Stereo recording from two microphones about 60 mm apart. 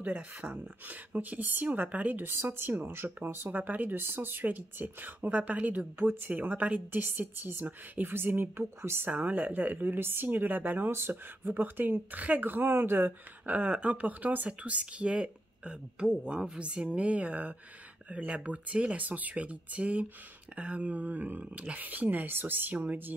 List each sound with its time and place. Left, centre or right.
0.0 s speech: right
2.2 s speech: right
9.1 s speech: right